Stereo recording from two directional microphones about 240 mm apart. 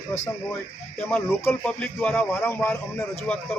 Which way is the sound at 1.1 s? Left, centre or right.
Centre.